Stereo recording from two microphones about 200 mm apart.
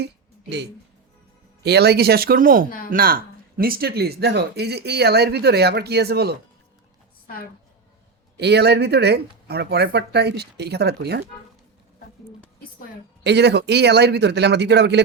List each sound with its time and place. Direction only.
1.6 s speech: 55° right (ahead or behind)
8.4 s speech: 55° right (ahead or behind)
13.2 s speech: 55° right (ahead or behind)